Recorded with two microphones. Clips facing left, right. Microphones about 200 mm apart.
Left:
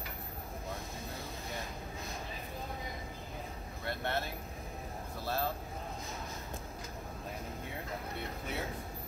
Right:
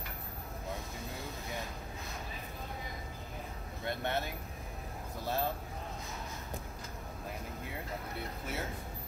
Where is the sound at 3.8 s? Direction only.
15° right (ahead or behind).